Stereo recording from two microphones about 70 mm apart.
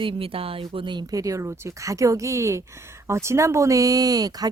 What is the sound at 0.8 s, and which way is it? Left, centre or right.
Speech, right.